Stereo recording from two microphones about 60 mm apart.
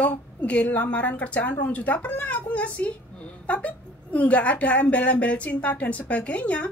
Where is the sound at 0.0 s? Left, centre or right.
Left.